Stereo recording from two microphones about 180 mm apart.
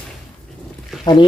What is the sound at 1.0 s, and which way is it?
Speech, 25° left (ahead or behind).